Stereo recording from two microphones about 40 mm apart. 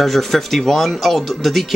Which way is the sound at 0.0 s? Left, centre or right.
Centre.